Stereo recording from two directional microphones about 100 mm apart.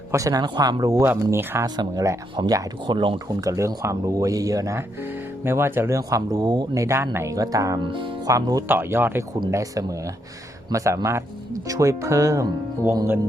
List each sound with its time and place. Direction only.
0.1 s speech: 35° right (ahead or behind)
1.0 s speech: 20° right (ahead or behind)
1.6 s speech: 40° right (ahead or behind)
3.2 s speech: 35° right (ahead or behind)
6.0 s speech: 35° right (ahead or behind)
6.8 s speech: 25° right (ahead or behind)
7.8 s speech: 55° right (ahead or behind)
8.3 s speech: 35° right (ahead or behind)
8.6 s speech: 20° right (ahead or behind)